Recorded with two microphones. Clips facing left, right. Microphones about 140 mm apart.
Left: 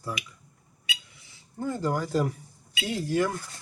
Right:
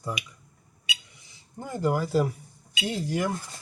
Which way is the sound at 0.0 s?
20° right (ahead or behind).